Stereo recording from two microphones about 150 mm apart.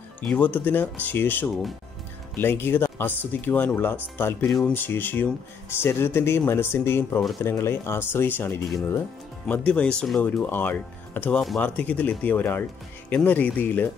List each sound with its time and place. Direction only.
0.2 s speech: 10° left (ahead or behind)
4.5 s speech: centre (ahead or behind)
4.7 s speech: 15° left (ahead or behind)